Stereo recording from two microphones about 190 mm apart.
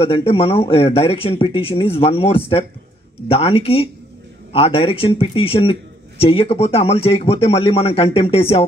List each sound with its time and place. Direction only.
0.0 s a man's voice: 30° left (ahead or behind)